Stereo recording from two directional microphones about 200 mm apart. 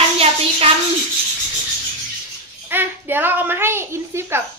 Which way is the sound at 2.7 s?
10° right (ahead or behind).